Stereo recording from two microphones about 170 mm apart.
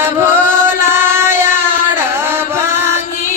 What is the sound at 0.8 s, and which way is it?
Music, 15° right (ahead or behind).